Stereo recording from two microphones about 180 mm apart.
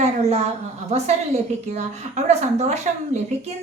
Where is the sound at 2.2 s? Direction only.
40° right (ahead or behind).